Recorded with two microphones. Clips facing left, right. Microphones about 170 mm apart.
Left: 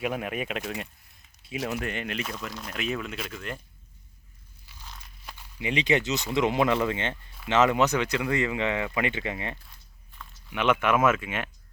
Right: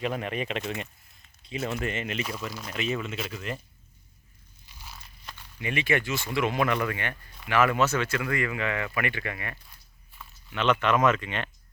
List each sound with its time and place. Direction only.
0.0 s speech: 5° left (ahead or behind)
4.6 s biting: 10° right (ahead or behind)
5.2 s speech: 15° left (ahead or behind)
10.5 s speech: 10° left (ahead or behind)